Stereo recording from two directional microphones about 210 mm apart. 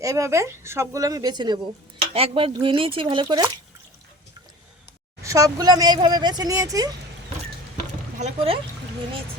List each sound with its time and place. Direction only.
0.0 s speech: 15° right (ahead or behind)
5.2 s speech: 15° right (ahead or behind)
8.2 s speech: 25° right (ahead or behind)